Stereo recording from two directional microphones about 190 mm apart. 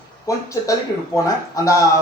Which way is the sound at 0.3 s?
15° left (ahead or behind).